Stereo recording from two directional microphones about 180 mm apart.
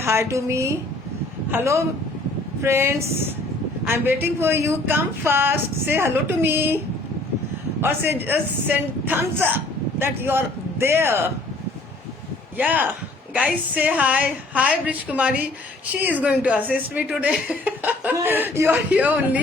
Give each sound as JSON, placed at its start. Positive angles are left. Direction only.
{"t": 0.0, "sound": "a man's voice", "side_deg": -15}
{"t": 12.5, "sound": "speech", "side_deg": -10}